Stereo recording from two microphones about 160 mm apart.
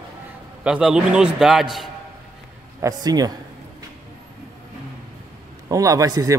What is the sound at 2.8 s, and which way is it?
Speech, 25° right (ahead or behind).